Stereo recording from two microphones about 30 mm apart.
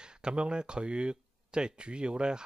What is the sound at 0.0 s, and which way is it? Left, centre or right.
Speech, right.